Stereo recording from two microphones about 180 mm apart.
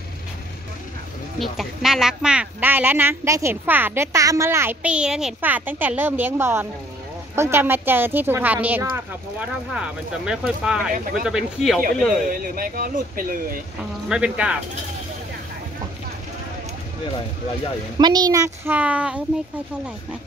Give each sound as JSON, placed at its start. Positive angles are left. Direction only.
{"t": 1.4, "sound": "speech", "side_deg": 0}
{"t": 12.3, "sound": "speech", "side_deg": -50}
{"t": 14.0, "sound": "speech", "side_deg": -5}
{"t": 17.9, "sound": "speech", "side_deg": -20}